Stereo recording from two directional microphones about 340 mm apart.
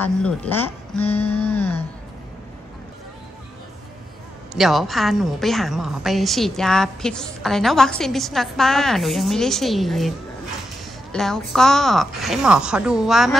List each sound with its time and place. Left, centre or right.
0.0 s a woman's voice: centre
1.4 s music: centre
4.6 s a woman's voice: centre